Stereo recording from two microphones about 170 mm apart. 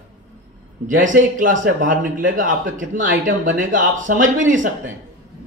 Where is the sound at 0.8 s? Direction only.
50° right (ahead or behind).